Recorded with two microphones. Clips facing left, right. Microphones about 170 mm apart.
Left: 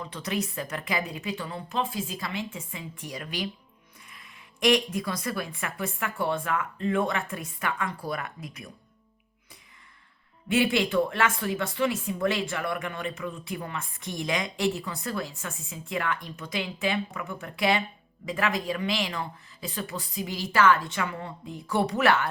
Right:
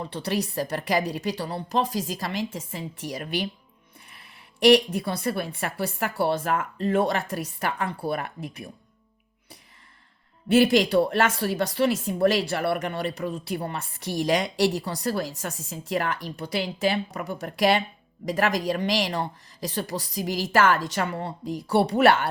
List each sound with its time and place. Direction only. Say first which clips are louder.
0.0 s speech: right 3 dB; 30° right (ahead or behind)
4.6 s speech: right 6 dB; 35° right (ahead or behind)
10.5 s speech: right 5 dB; 35° right (ahead or behind)